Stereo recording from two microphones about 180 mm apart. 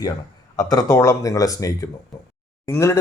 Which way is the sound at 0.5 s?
20° left (ahead or behind).